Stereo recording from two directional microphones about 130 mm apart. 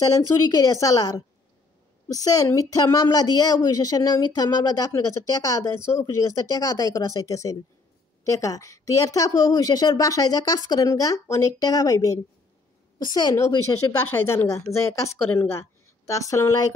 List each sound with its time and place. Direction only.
0.6 s speech: 25° left (ahead or behind)